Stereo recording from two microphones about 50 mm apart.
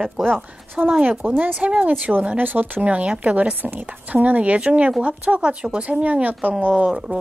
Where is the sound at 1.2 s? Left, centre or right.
Right.